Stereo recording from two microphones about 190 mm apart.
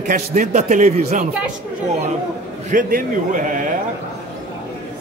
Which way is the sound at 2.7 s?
45° right (ahead or behind).